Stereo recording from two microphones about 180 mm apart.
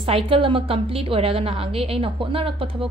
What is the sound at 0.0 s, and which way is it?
A woman's voice, 30° right (ahead or behind).